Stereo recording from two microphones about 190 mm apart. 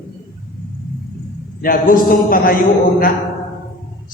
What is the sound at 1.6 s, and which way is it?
A man's voice, 50° left (ahead or behind).